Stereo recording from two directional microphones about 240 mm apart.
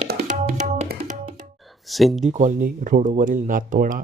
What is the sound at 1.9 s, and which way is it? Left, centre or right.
Speech, centre.